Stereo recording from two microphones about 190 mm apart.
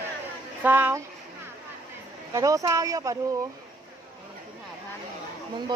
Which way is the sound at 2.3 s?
15° right (ahead or behind).